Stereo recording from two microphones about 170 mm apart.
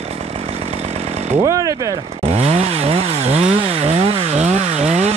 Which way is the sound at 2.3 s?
40° right (ahead or behind).